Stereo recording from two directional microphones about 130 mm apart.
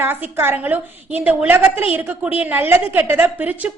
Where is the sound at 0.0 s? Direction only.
15° right (ahead or behind).